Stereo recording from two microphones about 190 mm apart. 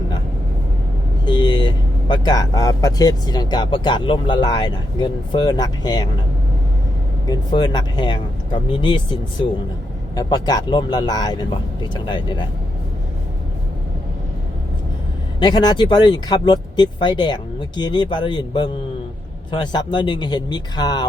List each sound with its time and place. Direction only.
1.2 s speech: 25° left (ahead or behind)
7.3 s speech: 20° left (ahead or behind)
15.4 s speech: 20° left (ahead or behind)